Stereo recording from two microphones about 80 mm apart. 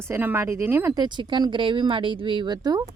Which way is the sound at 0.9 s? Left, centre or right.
Right.